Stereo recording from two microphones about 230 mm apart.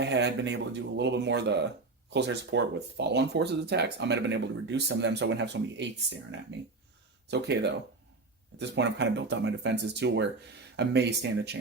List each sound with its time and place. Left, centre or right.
0.0 s speech: right
7.3 s speech: right